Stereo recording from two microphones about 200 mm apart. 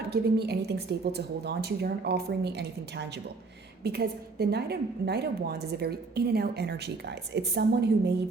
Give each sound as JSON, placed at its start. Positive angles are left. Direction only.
{"t": 0.1, "sound": "a woman's voice", "side_deg": -55}